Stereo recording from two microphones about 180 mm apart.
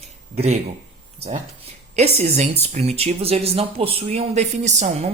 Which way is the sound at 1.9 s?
35° right (ahead or behind).